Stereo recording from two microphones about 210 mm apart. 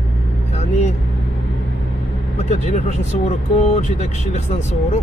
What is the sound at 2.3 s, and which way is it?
Speech, 30° left (ahead or behind).